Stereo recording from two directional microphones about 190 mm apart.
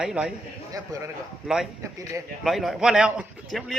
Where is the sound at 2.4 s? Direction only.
Centre (ahead or behind).